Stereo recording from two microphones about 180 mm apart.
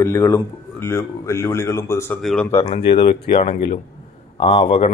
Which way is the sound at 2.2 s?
5° left (ahead or behind).